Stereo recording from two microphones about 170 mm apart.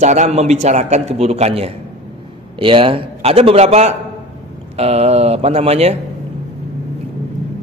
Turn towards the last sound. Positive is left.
turn(degrees=-35)  # may be behind; listen again after turning